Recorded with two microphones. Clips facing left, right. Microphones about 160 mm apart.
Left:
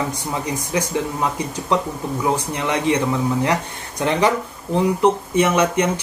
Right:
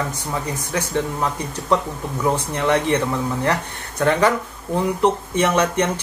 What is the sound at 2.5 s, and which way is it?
Speech, 15° left (ahead or behind).